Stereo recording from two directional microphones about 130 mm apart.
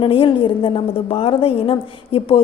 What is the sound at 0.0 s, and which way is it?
A woman's voice, 40° left (ahead or behind).